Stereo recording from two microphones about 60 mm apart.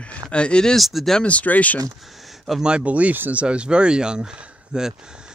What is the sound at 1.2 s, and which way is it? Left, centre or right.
Speech, left.